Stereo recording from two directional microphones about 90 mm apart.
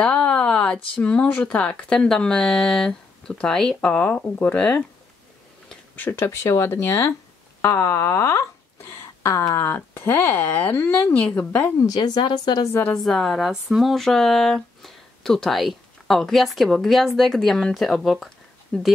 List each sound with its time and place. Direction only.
0.0 s speech: 10° left (ahead or behind)
3.9 s speech: 15° left (ahead or behind)
5.9 s speech: 25° left (ahead or behind)
11.8 s speech: 50° left (ahead or behind)
13.0 s speech: centre (ahead or behind)